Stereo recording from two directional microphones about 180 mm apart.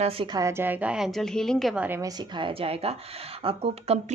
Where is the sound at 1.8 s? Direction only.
15° right (ahead or behind).